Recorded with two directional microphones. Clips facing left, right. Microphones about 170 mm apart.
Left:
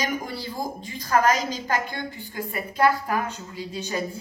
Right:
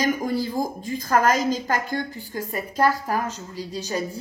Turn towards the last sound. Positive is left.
turn(degrees=-35)  # may be behind; listen again after turning